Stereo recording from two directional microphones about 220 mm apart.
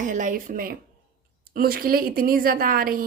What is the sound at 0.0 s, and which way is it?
A woman's voice, 35° right (ahead or behind).